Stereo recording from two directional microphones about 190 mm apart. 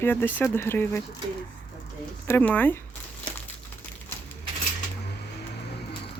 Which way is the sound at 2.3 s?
10° left (ahead or behind).